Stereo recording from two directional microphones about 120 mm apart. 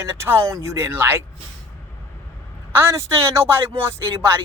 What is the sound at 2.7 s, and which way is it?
Speech, 20° right (ahead or behind).